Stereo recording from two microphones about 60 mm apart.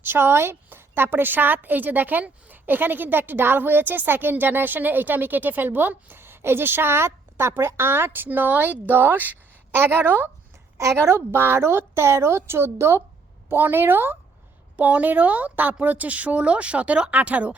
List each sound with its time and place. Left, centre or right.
0.0 s a woman's voice: right
10.8 s a woman's voice: right
14.8 s a woman's voice: right